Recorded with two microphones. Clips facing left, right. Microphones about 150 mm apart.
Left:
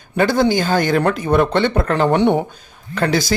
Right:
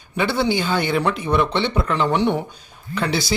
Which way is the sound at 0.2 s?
40° left (ahead or behind).